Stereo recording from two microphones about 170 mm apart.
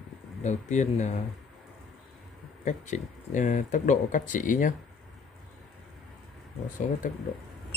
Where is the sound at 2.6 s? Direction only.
45° left (ahead or behind).